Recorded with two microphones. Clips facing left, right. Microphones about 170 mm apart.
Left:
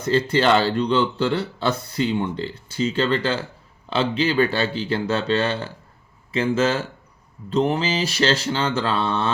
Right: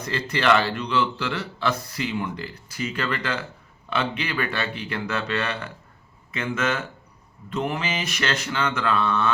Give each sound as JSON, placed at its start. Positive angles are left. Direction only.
{"t": 0.0, "sound": "speech", "side_deg": 30}
{"t": 7.5, "sound": "mantra", "side_deg": 30}